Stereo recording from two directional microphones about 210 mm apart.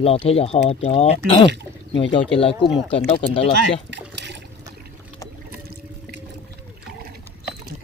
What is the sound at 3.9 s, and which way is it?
Water, 55° right (ahead or behind).